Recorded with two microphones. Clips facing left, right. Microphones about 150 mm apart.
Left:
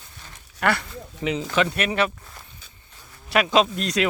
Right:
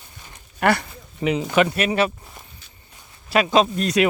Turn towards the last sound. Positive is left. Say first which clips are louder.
# right 3 dB
turn(degrees=-5)  # may be behind; listen again after turning